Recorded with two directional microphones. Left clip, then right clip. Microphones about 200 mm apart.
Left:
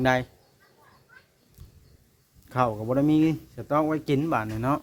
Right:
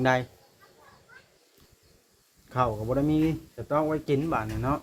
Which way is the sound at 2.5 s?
40° left (ahead or behind).